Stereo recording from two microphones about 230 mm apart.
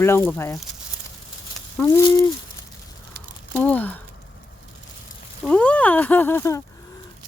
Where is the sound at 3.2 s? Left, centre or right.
Right.